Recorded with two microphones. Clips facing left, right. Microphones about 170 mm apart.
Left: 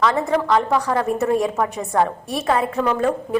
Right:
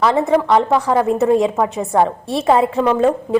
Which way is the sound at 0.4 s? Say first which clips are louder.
Right 4 dB; 20° right (ahead or behind).